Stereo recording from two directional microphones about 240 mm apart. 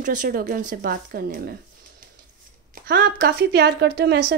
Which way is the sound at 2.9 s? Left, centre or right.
Right.